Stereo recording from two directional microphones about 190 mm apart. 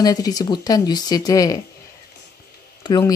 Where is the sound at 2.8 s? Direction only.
20° left (ahead or behind).